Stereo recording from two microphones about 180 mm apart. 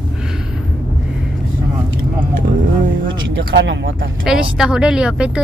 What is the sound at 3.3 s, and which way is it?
Speech, 85° right.